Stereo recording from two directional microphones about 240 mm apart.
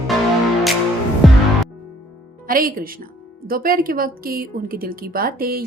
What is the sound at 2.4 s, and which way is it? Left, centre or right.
A woman's voice, right.